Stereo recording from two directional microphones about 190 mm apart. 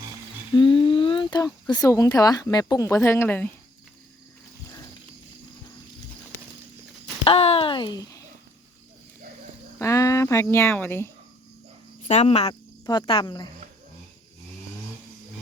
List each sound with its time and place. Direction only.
0.5 s a sound: 25° left (ahead or behind)
1.6 s speech: 20° left (ahead or behind)
7.3 s a sound: 30° left (ahead or behind)
9.7 s speech: 15° left (ahead or behind)
12.0 s speech: 35° left (ahead or behind)
12.8 s speech: 20° left (ahead or behind)